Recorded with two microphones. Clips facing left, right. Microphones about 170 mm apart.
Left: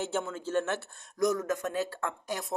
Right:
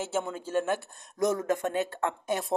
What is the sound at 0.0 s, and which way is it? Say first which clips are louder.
Speech: right 1 dB; 10° right (ahead or behind).